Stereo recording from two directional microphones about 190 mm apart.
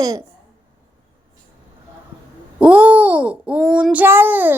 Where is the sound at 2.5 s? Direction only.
5° right (ahead or behind).